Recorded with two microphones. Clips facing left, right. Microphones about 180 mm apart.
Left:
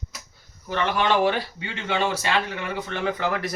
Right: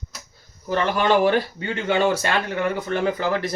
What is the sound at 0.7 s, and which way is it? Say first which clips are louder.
Speech: right 3 dB; 40° right (ahead or behind).